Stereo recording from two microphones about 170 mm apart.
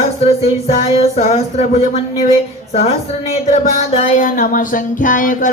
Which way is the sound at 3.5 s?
45° left (ahead or behind).